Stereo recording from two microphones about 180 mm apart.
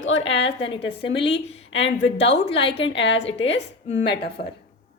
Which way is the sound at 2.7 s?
90° left.